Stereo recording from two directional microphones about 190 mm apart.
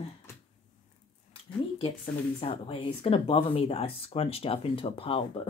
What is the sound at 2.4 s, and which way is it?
Speech, 30° left (ahead or behind).